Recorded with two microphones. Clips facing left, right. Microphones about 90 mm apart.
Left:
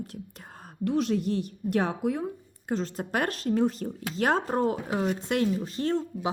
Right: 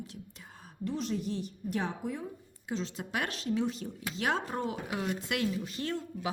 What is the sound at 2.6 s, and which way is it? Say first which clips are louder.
Speech: left 6 dB; 45° left (ahead or behind).